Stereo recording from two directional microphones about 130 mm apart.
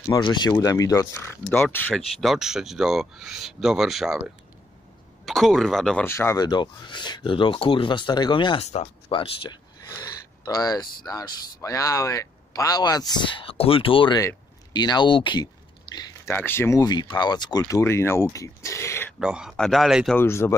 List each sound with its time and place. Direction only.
0.0 s speech: 30° left (ahead or behind); by 2.0 s 15° left (ahead or behind)
2.0 s speech: centre (ahead or behind)
5.2 s speech: centre (ahead or behind)
6.0 s speech: 20° left (ahead or behind); by 9.6 s 40° left (ahead or behind)
10.4 s speech: 30° left (ahead or behind)
14.2 s a sound: 35° left (ahead or behind)
16.3 s speech: 15° left (ahead or behind)
16.8 s speech: 30° left (ahead or behind)
19.1 s speech: 5° right (ahead or behind)
20.2 s speech: 20° left (ahead or behind)